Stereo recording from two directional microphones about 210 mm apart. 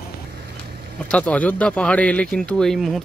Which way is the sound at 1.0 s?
5° left (ahead or behind).